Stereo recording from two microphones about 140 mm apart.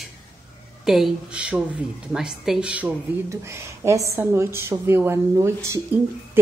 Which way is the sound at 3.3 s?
20° right (ahead or behind).